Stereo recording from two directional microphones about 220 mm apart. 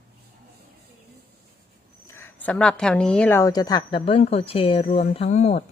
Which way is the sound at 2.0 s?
10° left (ahead or behind).